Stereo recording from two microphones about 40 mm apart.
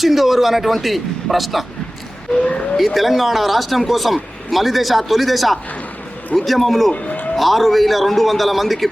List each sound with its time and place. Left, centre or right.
0.0 s speech: centre
2.4 s a sound: left
2.7 s speech: centre